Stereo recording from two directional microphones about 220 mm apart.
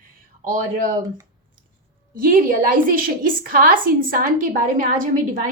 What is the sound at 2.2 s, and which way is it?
A woman's voice, 40° right (ahead or behind).